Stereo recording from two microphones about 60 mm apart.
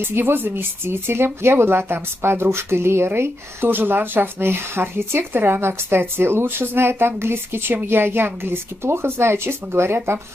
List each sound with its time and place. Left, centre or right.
0.0 s speech: right